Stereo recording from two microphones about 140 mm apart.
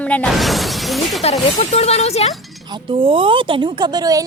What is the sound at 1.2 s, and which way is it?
Speech, 50° left (ahead or behind).